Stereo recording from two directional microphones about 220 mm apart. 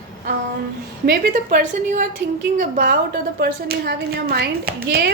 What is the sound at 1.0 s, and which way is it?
A woman's voice, 45° right (ahead or behind).